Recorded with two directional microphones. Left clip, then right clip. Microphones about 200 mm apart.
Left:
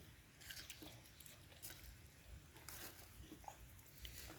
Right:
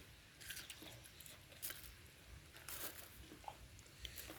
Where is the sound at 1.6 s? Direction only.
35° right (ahead or behind).